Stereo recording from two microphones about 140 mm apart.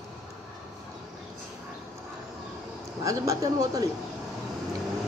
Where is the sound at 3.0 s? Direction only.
20° right (ahead or behind).